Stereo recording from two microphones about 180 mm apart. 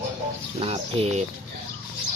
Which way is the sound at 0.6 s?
35° right (ahead or behind).